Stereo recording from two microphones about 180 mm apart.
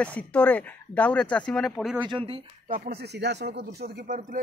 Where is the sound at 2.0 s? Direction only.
30° right (ahead or behind).